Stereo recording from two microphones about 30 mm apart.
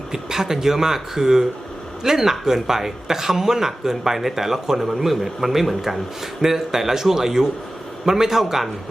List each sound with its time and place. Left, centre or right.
0.1 s speech: centre